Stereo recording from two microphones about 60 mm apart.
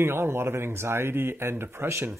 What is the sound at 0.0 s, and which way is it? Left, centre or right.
Speech, right.